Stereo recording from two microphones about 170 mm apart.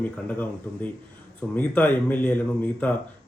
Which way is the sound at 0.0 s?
10° left (ahead or behind).